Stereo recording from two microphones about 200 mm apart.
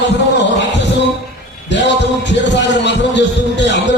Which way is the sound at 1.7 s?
60° left (ahead or behind).